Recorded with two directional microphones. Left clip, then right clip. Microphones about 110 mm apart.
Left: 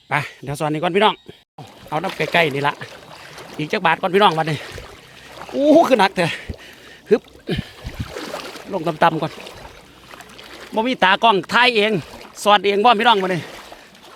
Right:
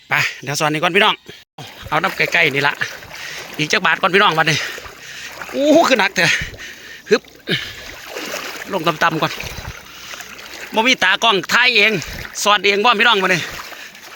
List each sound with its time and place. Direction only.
0.1 s speech: 15° left (ahead or behind)
4.2 s speech: 15° left (ahead or behind)
5.5 s speech: 10° right (ahead or behind)
5.7 s speech: 30° left (ahead or behind)
8.7 s speech: 10° left (ahead or behind)
10.8 s speech: 20° left (ahead or behind)